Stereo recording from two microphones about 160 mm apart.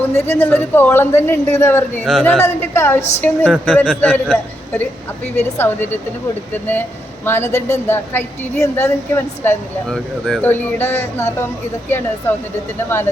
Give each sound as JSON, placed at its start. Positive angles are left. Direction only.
{"t": 0.1, "sound": "a man's voice", "side_deg": 15}
{"t": 2.0, "sound": "speech", "side_deg": 5}
{"t": 2.4, "sound": "a man's voice", "side_deg": 15}
{"t": 9.9, "sound": "a man's voice", "side_deg": 5}